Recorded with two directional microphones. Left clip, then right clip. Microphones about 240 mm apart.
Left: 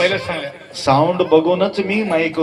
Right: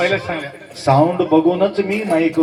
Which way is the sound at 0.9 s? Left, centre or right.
Left.